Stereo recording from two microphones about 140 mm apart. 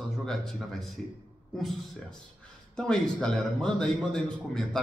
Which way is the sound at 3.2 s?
5° left (ahead or behind).